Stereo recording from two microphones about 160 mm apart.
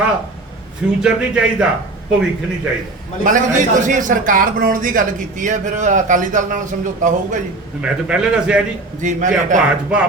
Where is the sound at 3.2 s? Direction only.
55° right (ahead or behind).